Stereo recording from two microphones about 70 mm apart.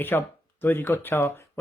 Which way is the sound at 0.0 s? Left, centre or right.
Left.